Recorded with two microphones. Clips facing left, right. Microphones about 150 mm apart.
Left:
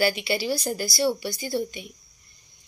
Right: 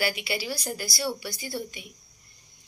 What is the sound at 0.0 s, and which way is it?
A woman's voice, 30° left (ahead or behind).